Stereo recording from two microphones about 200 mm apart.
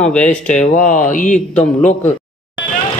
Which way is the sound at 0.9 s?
40° left (ahead or behind).